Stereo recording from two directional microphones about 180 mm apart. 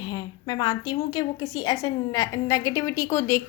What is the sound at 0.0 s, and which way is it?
A woman's voice, 25° left (ahead or behind).